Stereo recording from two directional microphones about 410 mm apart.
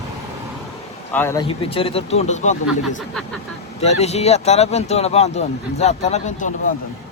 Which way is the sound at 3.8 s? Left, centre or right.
Centre.